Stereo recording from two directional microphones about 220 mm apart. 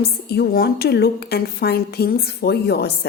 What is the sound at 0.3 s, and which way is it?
A woman's voice, 45° left (ahead or behind).